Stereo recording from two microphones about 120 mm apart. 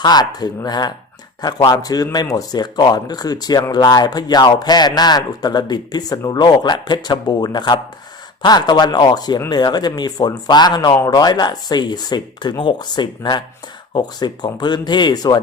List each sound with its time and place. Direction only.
0.0 s speech: 35° left (ahead or behind)